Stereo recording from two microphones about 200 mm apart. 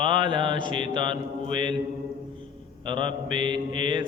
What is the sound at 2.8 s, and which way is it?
Mantra, 25° right (ahead or behind).